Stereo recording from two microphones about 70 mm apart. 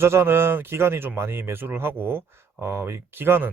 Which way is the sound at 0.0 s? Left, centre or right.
Right.